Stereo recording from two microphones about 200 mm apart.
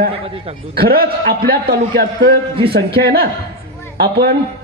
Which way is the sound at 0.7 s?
50° right (ahead or behind).